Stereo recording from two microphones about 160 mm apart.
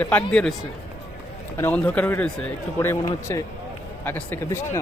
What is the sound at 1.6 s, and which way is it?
A man's voice, 10° left (ahead or behind).